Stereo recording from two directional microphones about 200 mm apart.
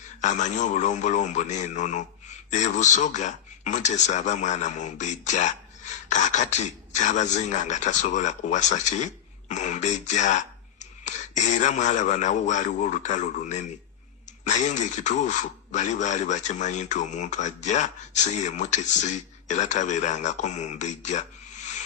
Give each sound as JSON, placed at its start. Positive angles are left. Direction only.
{"t": 0.2, "sound": "a man's voice", "side_deg": 35}